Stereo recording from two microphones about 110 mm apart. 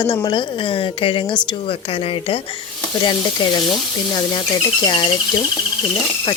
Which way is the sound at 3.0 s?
45° left (ahead or behind).